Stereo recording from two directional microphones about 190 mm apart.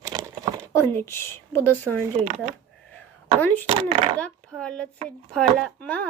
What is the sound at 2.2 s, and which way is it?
Speech, 40° right (ahead or behind).